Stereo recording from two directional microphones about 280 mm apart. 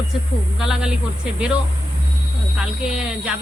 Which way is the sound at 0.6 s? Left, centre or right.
Centre.